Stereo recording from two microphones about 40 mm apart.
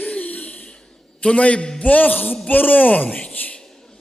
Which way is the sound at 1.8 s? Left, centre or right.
Left.